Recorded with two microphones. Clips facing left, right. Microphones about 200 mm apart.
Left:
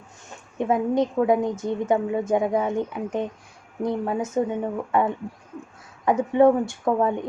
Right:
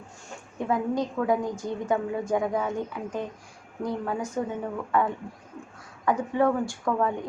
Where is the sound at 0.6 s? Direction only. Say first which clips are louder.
Left 5 dB; 20° left (ahead or behind).